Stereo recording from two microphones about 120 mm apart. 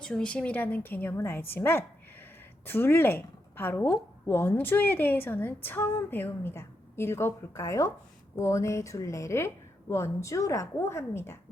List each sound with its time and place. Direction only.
0.0 s a woman's voice: 5° left (ahead or behind)